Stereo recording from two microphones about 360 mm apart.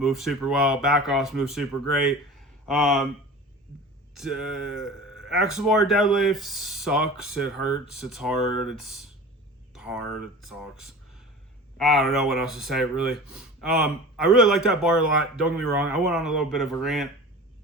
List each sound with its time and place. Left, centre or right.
0.0 s speech: centre
4.1 s speech: centre
11.8 s speech: centre